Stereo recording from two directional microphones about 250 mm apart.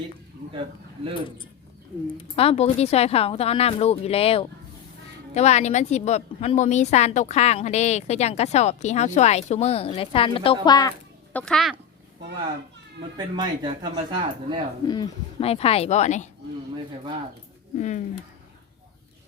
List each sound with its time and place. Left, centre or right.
2.3 s a woman's voice: left
11.3 s speech: centre
13.0 s a man's voice: centre
14.8 s a woman's voice: left
17.7 s a woman's voice: left